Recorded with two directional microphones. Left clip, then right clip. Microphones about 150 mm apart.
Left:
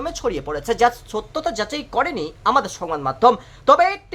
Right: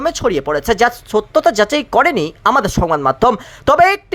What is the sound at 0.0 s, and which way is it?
A woman's voice, 35° right (ahead or behind).